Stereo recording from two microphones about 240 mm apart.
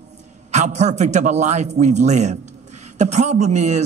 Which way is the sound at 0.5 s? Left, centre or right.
Right.